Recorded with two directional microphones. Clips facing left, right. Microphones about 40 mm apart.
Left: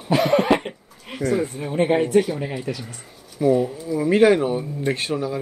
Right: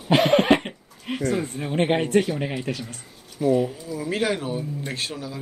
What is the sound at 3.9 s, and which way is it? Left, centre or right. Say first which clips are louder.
Speech: left 10 dB; left.